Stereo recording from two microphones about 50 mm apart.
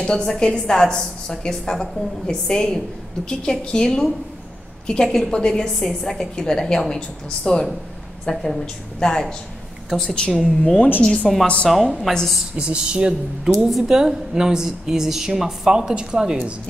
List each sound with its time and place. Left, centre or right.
0.0 s a woman's voice: centre
5.0 s a woman's voice: centre
5.3 s a woman's voice: centre
10.3 s a woman's voice: centre
11.4 s a woman's voice: left
11.7 s a woman's voice: centre
12.1 s a woman's voice: centre
12.5 s speech: centre
13.7 s a woman's voice: centre